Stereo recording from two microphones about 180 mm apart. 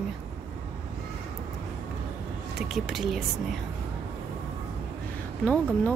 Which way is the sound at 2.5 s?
Centre (ahead or behind).